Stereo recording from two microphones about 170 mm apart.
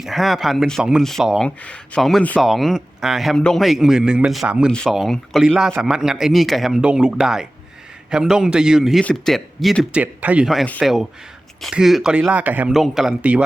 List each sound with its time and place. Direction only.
0.0 s speech: centre (ahead or behind)